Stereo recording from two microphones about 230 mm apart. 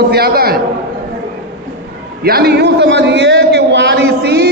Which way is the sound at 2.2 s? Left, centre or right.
Right.